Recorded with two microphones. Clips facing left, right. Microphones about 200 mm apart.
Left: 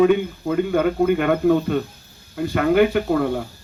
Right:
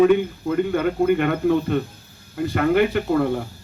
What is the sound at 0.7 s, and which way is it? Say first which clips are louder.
A man's voice: left 2 dB; 55° left (ahead or behind).